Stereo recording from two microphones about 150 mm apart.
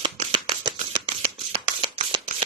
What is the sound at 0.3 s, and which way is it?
Shuffling cards, 30° right (ahead or behind).